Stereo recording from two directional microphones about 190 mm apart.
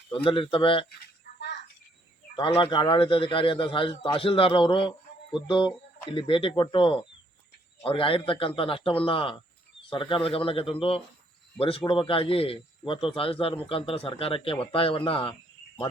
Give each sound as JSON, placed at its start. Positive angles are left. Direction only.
{"t": 0.3, "sound": "speech", "side_deg": 25}
{"t": 2.3, "sound": "speech", "side_deg": 25}